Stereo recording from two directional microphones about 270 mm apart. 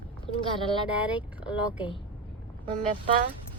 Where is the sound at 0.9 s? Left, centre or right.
Centre.